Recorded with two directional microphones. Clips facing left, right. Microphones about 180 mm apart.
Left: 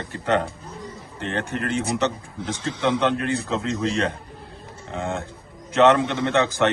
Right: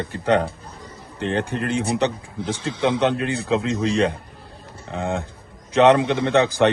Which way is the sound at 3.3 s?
65° right (ahead or behind).